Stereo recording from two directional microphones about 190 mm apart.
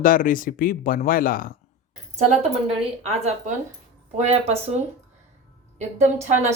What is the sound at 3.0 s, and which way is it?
A woman's voice, 35° right (ahead or behind).